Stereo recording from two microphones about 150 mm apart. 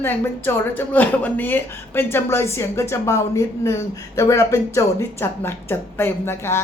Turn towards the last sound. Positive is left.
turn(degrees=15)  # may be behind; listen again after turning